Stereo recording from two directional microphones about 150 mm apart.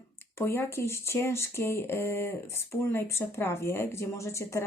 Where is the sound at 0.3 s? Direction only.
15° left (ahead or behind).